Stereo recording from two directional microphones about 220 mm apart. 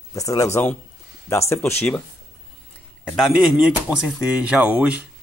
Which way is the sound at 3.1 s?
Centre (ahead or behind).